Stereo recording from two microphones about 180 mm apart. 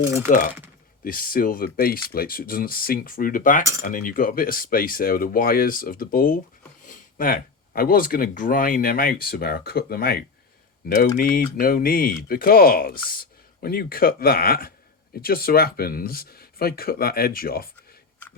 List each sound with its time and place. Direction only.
1.0 s speech: 50° left (ahead or behind)
6.8 s a sound: 50° left (ahead or behind)
7.8 s speech: 55° left (ahead or behind)